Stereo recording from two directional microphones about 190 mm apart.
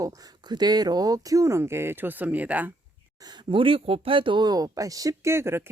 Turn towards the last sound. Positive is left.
turn(degrees=-15)  # may be behind; listen again after turning